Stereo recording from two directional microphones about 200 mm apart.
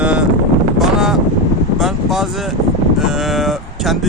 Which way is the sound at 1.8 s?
Centre (ahead or behind).